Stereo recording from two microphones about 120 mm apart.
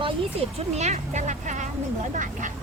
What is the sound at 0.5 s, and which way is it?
Speech, 65° right (ahead or behind).